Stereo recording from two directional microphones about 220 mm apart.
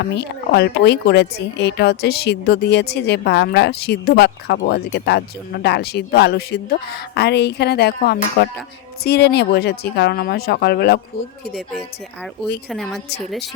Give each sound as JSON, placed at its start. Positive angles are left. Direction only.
{"t": 0.2, "sound": "a woman's voice", "side_deg": 50}
{"t": 12.7, "sound": "a woman's voice", "side_deg": 0}